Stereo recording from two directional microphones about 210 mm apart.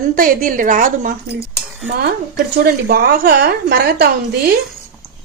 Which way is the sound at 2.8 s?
45° right (ahead or behind).